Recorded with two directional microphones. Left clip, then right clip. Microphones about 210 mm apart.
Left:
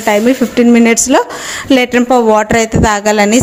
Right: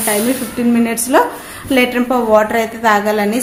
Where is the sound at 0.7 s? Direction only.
40° left (ahead or behind).